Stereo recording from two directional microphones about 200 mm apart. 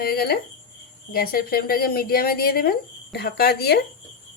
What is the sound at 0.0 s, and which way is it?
Speech, 50° left (ahead or behind).